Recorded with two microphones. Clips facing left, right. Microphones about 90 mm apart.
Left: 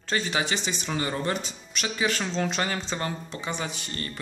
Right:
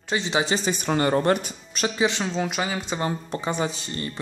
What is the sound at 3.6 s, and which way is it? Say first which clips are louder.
Speech: right 6 dB; 30° right (ahead or behind).